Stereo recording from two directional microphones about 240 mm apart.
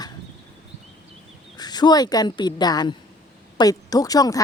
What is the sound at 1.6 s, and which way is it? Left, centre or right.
Speech, centre.